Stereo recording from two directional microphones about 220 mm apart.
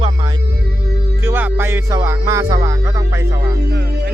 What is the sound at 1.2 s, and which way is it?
Music, 10° right (ahead or behind).